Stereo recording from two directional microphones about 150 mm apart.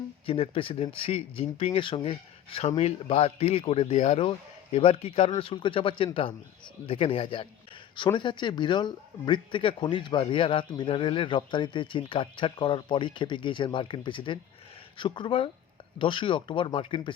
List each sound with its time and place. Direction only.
0.3 s speech: 40° left (ahead or behind)